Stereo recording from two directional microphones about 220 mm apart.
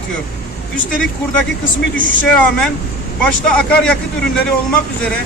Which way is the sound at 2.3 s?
5° left (ahead or behind).